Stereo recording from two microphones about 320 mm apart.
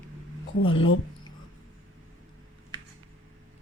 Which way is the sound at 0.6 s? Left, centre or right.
Left.